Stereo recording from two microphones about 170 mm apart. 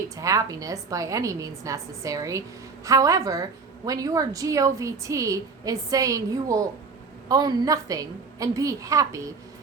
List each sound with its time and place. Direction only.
0.2 s a woman's voice: 20° right (ahead or behind)